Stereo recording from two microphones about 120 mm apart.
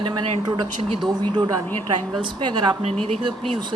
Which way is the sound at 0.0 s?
40° right (ahead or behind).